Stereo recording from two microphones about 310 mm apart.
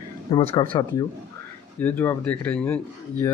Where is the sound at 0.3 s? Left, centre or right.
Centre.